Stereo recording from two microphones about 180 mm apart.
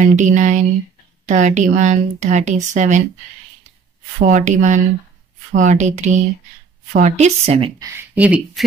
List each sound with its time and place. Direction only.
0.0 s speech: 40° right (ahead or behind)
4.2 s speech: 40° right (ahead or behind)
7.8 s speech: 10° right (ahead or behind)